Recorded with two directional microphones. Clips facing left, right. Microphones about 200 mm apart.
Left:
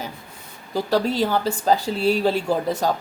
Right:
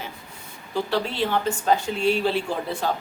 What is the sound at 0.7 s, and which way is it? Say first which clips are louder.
Speech: left 4 dB; 40° left (ahead or behind).